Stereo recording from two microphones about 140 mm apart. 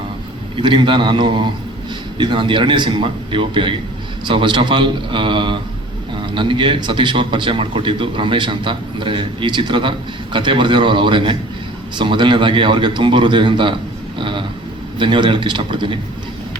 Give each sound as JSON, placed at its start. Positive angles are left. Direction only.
{"t": 0.5, "sound": "speech", "side_deg": -35}
{"t": 14.2, "sound": "vehicle", "side_deg": -35}
{"t": 14.9, "sound": "speech", "side_deg": -35}